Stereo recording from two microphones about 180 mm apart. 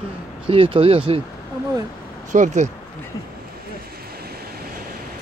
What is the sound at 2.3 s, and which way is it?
Speech, 45° right (ahead or behind).